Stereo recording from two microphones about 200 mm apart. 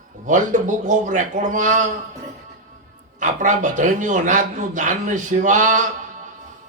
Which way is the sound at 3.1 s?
40° right (ahead or behind).